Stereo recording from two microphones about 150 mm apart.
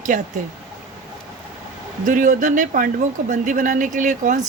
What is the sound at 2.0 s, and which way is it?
Speech, 60° right (ahead or behind).